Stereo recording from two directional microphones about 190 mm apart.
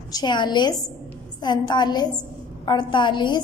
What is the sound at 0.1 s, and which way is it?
A woman's voice, 25° left (ahead or behind).